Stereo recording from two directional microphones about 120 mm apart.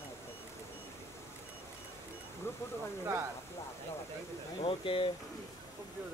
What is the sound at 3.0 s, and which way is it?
Speech, 20° right (ahead or behind).